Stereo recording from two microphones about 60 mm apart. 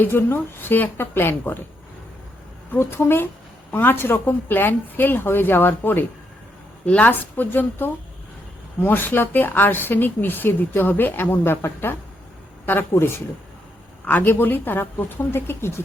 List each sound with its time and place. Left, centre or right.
0.0 s a woman's voice: left
2.7 s a woman's voice: left
6.8 s a woman's voice: centre
7.1 s a woman's voice: left
14.0 s a woman's voice: left